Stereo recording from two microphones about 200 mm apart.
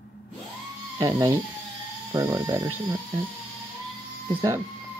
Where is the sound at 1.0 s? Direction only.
20° right (ahead or behind).